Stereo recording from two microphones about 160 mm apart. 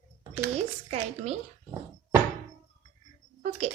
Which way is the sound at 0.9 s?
40° right (ahead or behind).